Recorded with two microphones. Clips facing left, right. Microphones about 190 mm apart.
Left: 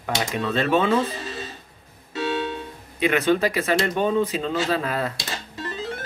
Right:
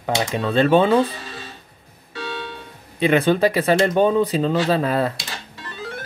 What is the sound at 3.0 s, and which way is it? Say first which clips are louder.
Speech: right 3 dB; 30° right (ahead or behind).